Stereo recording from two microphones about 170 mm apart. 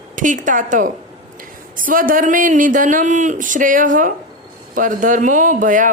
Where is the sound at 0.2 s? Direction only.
50° right (ahead or behind).